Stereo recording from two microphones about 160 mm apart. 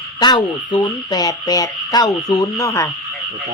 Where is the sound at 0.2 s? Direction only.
30° left (ahead or behind).